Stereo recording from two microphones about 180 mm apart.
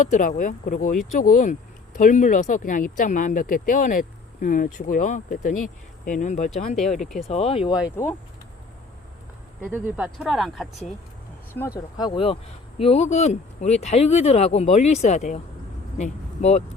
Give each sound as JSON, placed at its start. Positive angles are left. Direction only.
{"t": 0.0, "sound": "speech", "side_deg": 45}
{"t": 6.7, "sound": "speech", "side_deg": 0}
{"t": 7.3, "sound": "speech", "side_deg": 35}
{"t": 9.6, "sound": "speech", "side_deg": -10}
{"t": 11.9, "sound": "speech", "side_deg": 25}